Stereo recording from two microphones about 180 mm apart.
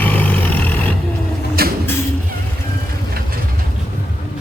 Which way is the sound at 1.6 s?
55° right (ahead or behind).